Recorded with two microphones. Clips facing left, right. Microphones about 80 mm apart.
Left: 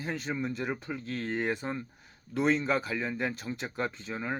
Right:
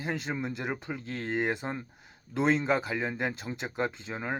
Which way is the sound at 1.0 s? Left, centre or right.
Right.